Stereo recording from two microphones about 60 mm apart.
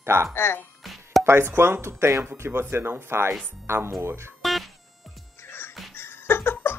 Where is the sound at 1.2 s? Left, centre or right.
Right.